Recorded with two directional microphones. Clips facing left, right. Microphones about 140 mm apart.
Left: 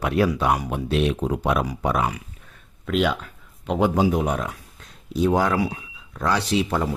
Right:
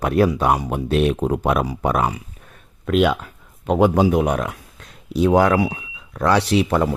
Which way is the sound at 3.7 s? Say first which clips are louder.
Right 4 dB; 65° right (ahead or behind).